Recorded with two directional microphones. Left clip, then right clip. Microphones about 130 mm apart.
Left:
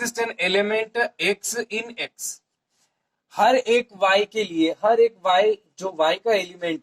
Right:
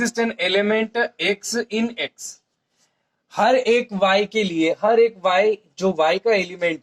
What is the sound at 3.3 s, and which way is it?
Speech, 35° right (ahead or behind).